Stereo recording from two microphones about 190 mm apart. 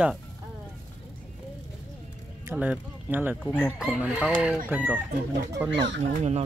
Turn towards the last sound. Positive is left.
turn(degrees=-35)  # may be behind; listen again after turning